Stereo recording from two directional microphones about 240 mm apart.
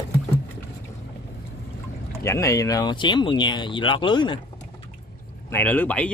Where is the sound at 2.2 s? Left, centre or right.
Centre.